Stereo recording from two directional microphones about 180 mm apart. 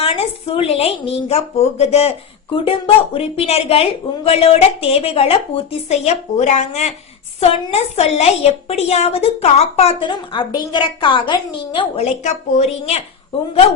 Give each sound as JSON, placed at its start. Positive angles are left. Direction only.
{"t": 0.0, "sound": "speech", "side_deg": 30}
{"t": 12.2, "sound": "speech", "side_deg": 35}